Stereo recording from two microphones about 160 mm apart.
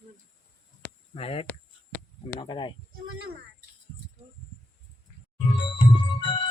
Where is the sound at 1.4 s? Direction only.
15° left (ahead or behind).